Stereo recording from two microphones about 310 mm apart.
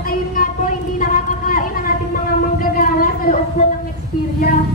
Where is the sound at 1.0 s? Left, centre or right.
Left.